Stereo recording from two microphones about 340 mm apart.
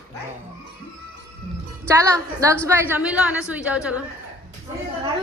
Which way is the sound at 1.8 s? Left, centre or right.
Centre.